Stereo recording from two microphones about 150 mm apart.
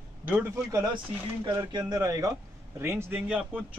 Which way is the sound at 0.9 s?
30° right (ahead or behind).